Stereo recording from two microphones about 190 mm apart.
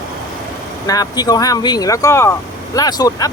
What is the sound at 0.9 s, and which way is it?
Speech, 20° left (ahead or behind).